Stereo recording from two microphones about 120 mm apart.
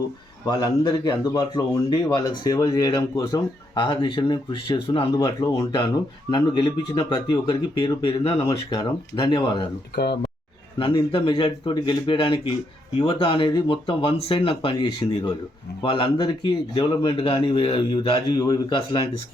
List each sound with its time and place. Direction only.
0.4 s speech: 35° left (ahead or behind)
3.8 s speech: 40° left (ahead or behind)
10.8 s speech: 45° left (ahead or behind)